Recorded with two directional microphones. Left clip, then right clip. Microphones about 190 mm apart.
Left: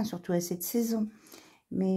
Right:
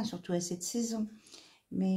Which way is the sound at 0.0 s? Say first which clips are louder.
Left 4 dB; 40° left (ahead or behind).